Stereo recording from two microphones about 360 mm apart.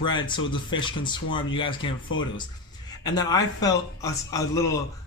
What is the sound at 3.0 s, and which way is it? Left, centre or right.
A man's voice, centre.